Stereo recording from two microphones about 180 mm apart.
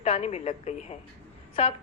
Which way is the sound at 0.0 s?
35° left (ahead or behind).